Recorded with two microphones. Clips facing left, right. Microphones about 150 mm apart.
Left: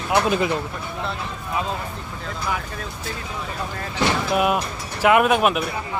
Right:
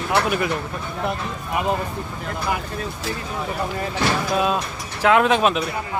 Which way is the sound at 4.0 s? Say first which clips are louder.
Left 1 dB; 15° left (ahead or behind).